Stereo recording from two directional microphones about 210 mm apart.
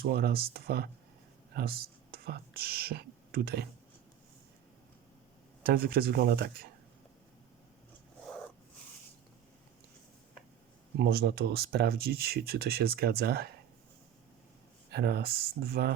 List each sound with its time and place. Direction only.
0.0 s speech: 50° right (ahead or behind)
5.6 s speech: 45° right (ahead or behind)
11.0 s speech: 50° right (ahead or behind)
14.9 s speech: 50° right (ahead or behind)